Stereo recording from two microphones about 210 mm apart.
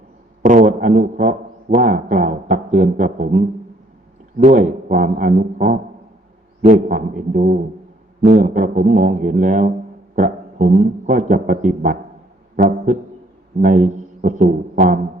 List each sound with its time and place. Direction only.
0.4 s a man's voice: 40° right (ahead or behind)
6.8 s a man's voice: 40° right (ahead or behind)
12.5 s music: 40° right (ahead or behind)
13.6 s a man's voice: 40° right (ahead or behind)